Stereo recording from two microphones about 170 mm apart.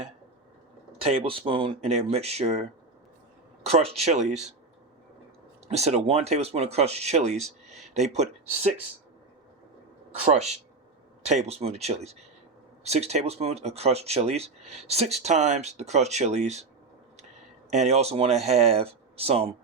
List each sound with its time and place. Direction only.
0.9 s speech: 35° right (ahead or behind)
5.6 s speech: 40° right (ahead or behind)
11.2 s speech: 40° right (ahead or behind)
17.7 s speech: 40° right (ahead or behind)